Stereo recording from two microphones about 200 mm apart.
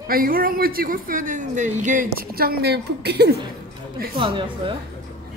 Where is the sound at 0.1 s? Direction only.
45° right (ahead or behind).